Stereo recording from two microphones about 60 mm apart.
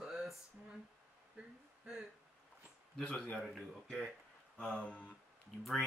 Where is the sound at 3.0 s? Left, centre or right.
Centre.